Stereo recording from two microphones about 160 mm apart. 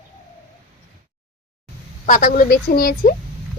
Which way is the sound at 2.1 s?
60° left (ahead or behind).